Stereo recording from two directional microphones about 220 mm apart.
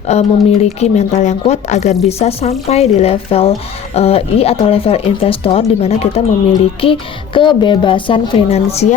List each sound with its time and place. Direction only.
0.1 s speech: 30° left (ahead or behind)
7.3 s speech: 20° left (ahead or behind)